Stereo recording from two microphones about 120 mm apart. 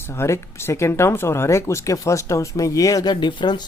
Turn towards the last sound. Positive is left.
turn(degrees=40)  # may be behind; listen again after turning